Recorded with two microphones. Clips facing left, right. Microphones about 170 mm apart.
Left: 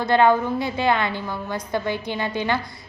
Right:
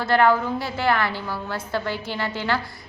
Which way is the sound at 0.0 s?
20° left (ahead or behind).